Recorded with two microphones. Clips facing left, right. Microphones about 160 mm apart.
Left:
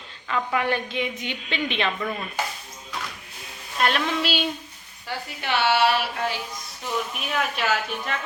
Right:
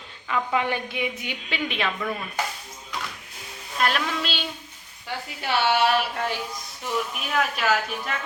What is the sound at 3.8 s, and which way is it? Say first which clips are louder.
Speech: left 2 dB; centre (ahead or behind).